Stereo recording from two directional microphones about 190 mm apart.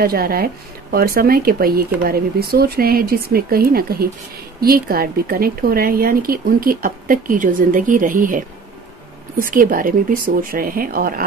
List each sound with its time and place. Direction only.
0.0 s speech: 50° right (ahead or behind)